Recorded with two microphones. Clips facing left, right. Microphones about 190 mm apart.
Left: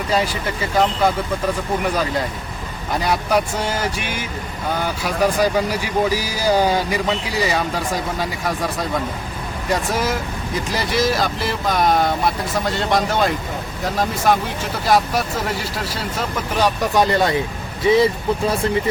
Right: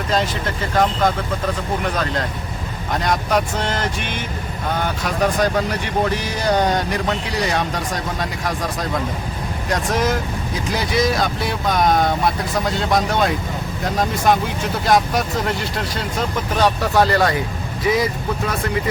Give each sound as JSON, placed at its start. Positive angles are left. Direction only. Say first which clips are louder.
{"t": 0.1, "sound": "speech", "louder": "even", "side_deg": 10}
{"t": 16.6, "sound": "speech", "louder": "right 1 dB", "side_deg": 15}